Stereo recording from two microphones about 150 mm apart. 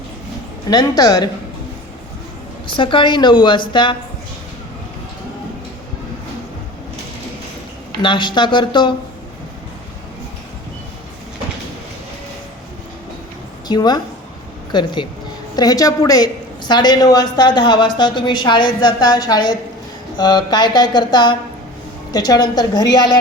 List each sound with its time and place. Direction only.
0.7 s a woman's voice: 25° left (ahead or behind)
2.7 s a woman's voice: 35° left (ahead or behind)
8.0 s a woman's voice: 30° left (ahead or behind)
13.7 s a woman's voice: 30° left (ahead or behind)